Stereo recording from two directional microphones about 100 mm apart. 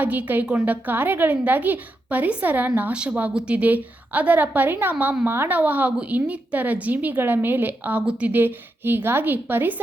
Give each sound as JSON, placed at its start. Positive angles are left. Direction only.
{"t": 0.0, "sound": "a woman's voice", "side_deg": -20}